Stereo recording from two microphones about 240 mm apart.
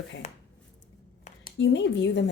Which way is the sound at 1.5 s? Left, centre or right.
Left.